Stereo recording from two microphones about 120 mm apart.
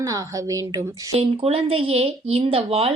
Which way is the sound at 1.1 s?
55° right (ahead or behind).